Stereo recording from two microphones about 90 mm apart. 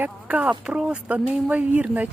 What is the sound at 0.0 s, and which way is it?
Speech, 15° right (ahead or behind).